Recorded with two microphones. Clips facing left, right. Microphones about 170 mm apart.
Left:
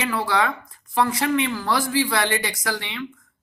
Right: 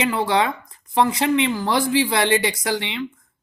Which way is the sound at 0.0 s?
20° right (ahead or behind).